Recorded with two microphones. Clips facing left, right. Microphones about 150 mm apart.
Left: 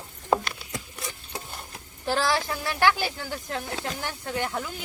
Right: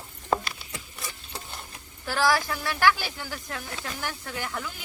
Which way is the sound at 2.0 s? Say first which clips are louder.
Even; 25° left (ahead or behind).